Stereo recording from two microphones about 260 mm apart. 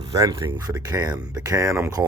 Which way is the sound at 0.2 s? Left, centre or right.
Centre.